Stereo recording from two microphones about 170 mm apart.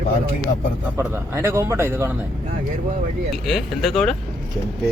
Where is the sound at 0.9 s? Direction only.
15° right (ahead or behind).